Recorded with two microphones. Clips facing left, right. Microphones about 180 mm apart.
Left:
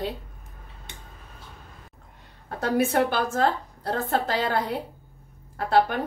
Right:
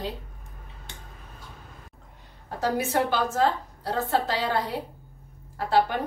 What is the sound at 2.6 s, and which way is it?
A woman's voice, 55° left (ahead or behind).